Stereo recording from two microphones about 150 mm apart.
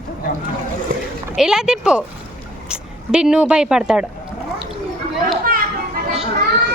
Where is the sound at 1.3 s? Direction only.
5° right (ahead or behind).